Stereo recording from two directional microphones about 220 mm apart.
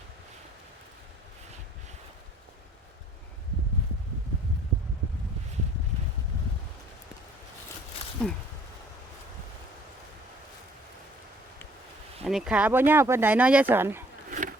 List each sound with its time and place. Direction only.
8.2 s speech: 5° left (ahead or behind)
12.2 s speech: centre (ahead or behind)
14.3 s a sound: 35° right (ahead or behind)